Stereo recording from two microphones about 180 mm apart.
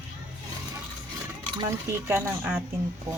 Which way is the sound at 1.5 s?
20° right (ahead or behind).